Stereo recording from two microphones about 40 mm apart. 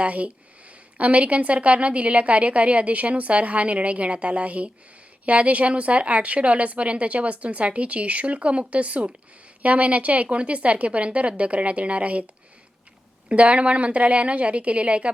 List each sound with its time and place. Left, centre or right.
0.0 s a woman's voice: right
13.2 s a woman's voice: right